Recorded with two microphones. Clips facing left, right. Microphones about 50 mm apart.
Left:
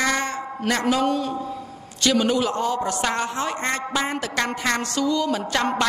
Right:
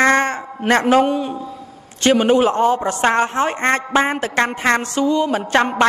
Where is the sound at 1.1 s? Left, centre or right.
Right.